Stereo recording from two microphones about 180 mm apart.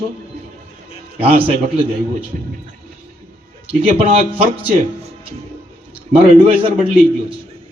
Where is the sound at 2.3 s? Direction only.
50° right (ahead or behind).